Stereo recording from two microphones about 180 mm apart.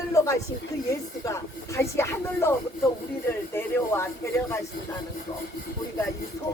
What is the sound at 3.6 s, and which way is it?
Speech, 10° left (ahead or behind).